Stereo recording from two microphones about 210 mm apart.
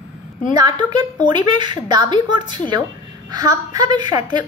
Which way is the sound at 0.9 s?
20° right (ahead or behind).